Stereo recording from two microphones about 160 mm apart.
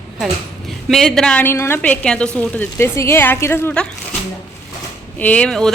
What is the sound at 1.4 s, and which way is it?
A woman's voice, 15° left (ahead or behind).